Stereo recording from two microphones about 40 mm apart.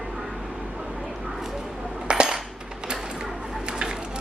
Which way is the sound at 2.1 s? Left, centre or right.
Centre.